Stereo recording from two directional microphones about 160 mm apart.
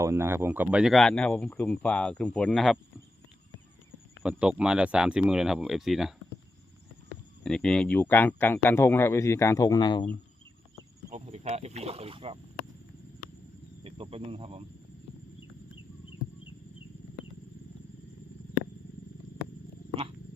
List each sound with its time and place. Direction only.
0.0 s speech: 15° right (ahead or behind); by 2.7 s 5° left (ahead or behind)
4.2 s speech: 5° right (ahead or behind)
7.4 s speech: 5° left (ahead or behind); by 10.1 s 25° left (ahead or behind)
11.1 s speech: 40° right (ahead or behind)
13.8 s speech: 35° right (ahead or behind)